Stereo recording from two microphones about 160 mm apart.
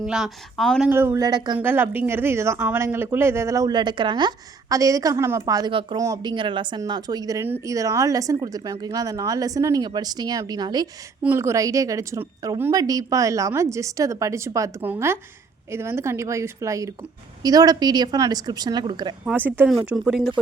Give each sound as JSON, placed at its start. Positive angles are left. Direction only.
{"t": 0.0, "sound": "speech", "side_deg": -5}
{"t": 0.9, "sound": "speech", "side_deg": -15}
{"t": 1.5, "sound": "speech", "side_deg": -15}
{"t": 11.2, "sound": "speech", "side_deg": -15}
{"t": 19.5, "sound": "speech", "side_deg": -10}